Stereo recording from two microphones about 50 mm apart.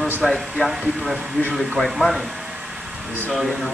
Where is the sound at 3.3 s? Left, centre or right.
Centre.